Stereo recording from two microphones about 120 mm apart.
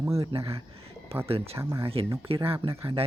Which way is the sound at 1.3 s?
55° right (ahead or behind).